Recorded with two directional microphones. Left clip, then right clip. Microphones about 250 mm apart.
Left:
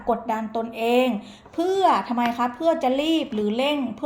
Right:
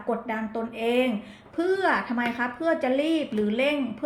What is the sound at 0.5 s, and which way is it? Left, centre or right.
A woman's voice, left.